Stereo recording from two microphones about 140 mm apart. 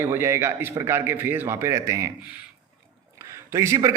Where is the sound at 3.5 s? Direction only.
20° right (ahead or behind).